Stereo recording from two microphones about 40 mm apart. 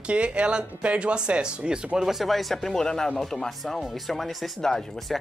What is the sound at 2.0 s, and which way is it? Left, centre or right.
Speech, centre.